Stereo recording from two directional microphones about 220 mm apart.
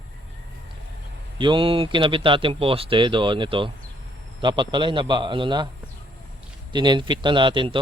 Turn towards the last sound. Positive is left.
turn(degrees=-20)  # may be behind; listen again after turning